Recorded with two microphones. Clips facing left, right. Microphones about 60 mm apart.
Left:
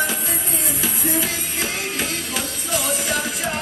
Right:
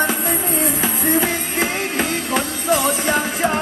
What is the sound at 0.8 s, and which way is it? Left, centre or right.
Music, right.